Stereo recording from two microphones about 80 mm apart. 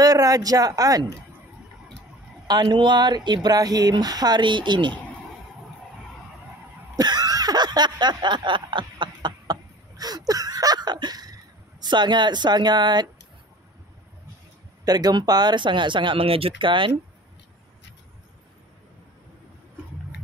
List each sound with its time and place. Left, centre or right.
0.0 s speech: right
2.4 s speech: right
3.4 s speech: right
7.0 s a sound: right
11.8 s speech: right
14.9 s speech: right